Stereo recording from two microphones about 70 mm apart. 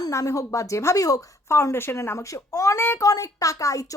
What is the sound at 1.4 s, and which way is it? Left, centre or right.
A woman's voice, left.